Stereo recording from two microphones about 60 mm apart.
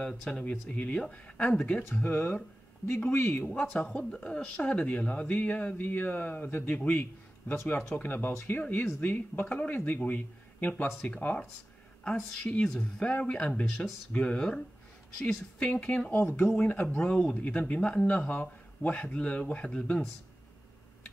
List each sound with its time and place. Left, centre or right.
0.0 s speech: centre
2.0 s speech: left
3.4 s a man's voice: centre